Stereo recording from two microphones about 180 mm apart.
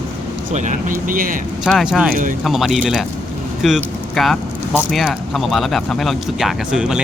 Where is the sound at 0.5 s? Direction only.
45° right (ahead or behind).